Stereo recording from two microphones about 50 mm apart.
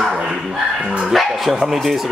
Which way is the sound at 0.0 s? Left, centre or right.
Centre.